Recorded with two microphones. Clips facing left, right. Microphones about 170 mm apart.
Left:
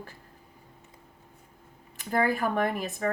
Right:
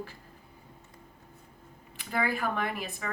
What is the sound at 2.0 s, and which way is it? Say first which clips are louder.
A woman's voice: left 5 dB; 45° left (ahead or behind).